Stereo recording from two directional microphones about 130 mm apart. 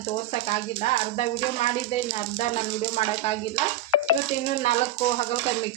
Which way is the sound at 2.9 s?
55° left (ahead or behind).